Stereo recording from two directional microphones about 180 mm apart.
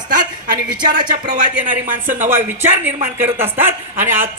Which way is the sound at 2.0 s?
45° right (ahead or behind).